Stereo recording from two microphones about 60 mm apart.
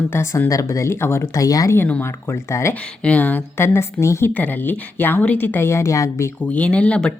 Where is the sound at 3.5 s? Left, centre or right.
Left.